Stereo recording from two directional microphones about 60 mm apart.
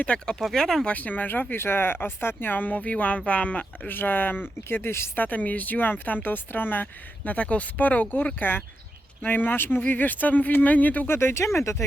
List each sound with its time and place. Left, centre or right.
0.0 s speech: centre
0.3 s speech: centre
0.9 s speech: left
3.8 s speech: left
5.1 s speech: left
11.1 s speech: left